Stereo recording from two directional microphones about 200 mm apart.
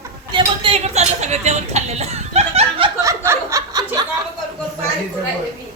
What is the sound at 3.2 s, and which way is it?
Chuckle, 15° right (ahead or behind).